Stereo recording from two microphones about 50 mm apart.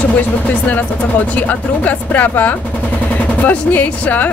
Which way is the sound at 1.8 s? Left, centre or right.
Left.